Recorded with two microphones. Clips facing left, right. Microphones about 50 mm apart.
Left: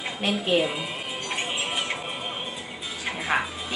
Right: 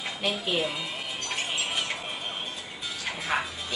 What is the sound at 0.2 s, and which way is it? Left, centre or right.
Speech, left.